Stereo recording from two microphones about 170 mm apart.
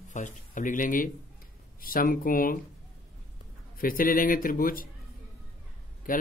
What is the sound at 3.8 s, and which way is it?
Speech, 55° left (ahead or behind).